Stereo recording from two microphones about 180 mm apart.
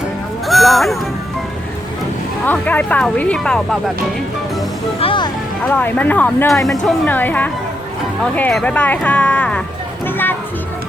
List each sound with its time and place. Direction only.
0.4 s music: centre (ahead or behind)
2.5 s speech: 10° left (ahead or behind)
4.9 s speech: 30° left (ahead or behind)
5.6 s speech: 10° left (ahead or behind)